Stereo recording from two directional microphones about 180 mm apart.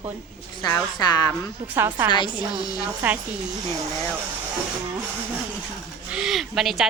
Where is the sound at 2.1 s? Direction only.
25° left (ahead or behind).